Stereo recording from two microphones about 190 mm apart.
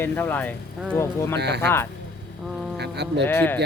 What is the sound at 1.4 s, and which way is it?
Speech, 60° right (ahead or behind).